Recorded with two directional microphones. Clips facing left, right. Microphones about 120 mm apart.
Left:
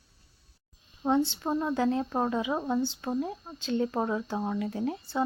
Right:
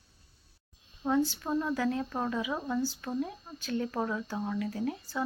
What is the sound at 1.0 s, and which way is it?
Speech, 25° left (ahead or behind).